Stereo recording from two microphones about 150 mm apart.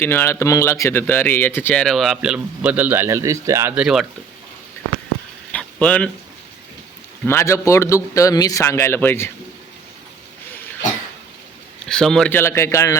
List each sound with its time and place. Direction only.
0.0 s speech: 15° left (ahead or behind); by 3.8 s 15° right (ahead or behind)
5.5 s a sound: 5° left (ahead or behind)
7.3 s a man's voice: 20° left (ahead or behind)
11.9 s a man's voice: 5° left (ahead or behind)
12.3 s speech: 15° left (ahead or behind)